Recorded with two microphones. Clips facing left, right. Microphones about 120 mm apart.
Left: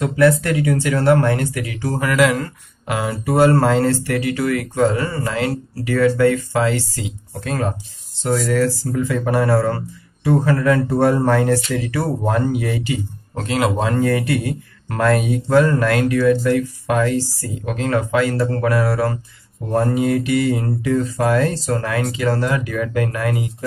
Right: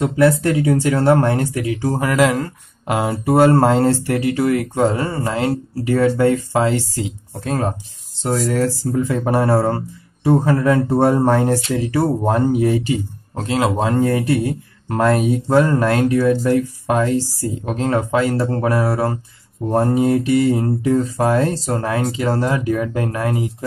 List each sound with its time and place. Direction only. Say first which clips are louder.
0.0 s speech: even; 30° right (ahead or behind)